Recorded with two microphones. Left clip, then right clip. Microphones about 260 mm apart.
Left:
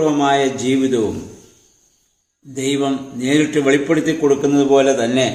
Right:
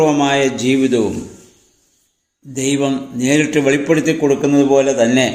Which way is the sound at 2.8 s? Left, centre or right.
Centre.